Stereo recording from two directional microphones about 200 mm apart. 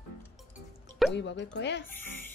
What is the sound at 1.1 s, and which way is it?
Speech, 60° left (ahead or behind).